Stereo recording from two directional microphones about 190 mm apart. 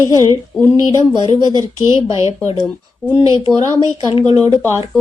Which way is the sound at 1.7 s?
30° left (ahead or behind).